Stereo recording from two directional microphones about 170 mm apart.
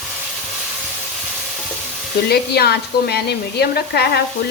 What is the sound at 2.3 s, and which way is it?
Speech, 70° left (ahead or behind).